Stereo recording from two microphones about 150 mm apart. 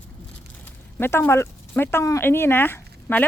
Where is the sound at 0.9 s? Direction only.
15° left (ahead or behind).